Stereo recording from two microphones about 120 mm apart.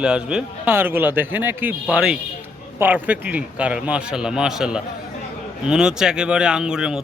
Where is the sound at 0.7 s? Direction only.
20° right (ahead or behind).